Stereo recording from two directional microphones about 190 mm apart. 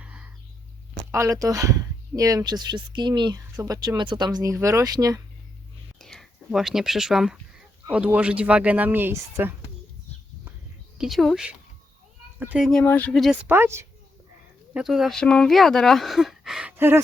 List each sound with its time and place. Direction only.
0.0 s a sound: 5° right (ahead or behind)
0.9 s speech: 15° right (ahead or behind)
6.0 s speech: centre (ahead or behind)
10.9 s speech: centre (ahead or behind)
12.8 s speech: 10° left (ahead or behind)
13.5 s speech: 15° right (ahead or behind)